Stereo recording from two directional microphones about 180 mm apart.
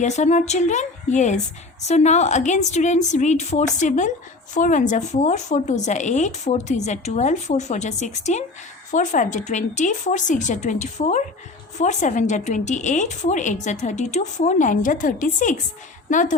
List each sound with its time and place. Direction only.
0.0 s a woman's voice: 40° left (ahead or behind)